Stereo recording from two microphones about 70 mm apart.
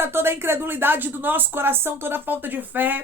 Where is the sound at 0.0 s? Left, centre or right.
Right.